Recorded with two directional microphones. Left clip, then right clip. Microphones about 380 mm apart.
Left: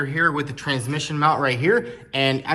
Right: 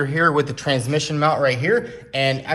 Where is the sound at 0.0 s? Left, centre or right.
Centre.